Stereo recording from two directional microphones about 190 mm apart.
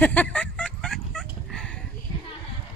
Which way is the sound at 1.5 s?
5° left (ahead or behind).